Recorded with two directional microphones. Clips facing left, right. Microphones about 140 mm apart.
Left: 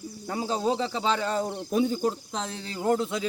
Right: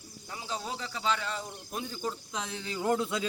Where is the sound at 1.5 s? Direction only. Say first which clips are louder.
Left 13 dB; 70° left (ahead or behind).